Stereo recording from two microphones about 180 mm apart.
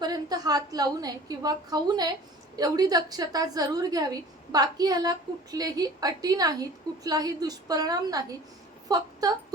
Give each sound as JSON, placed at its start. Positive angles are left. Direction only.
{"t": 0.0, "sound": "a woman's voice", "side_deg": -20}